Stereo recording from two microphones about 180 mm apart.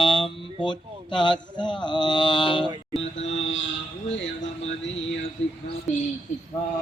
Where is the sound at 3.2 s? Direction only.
90° left.